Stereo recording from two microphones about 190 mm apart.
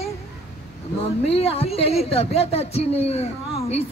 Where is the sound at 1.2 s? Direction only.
30° left (ahead or behind).